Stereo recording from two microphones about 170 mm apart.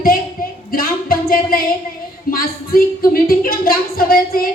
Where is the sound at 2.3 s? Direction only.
60° left (ahead or behind).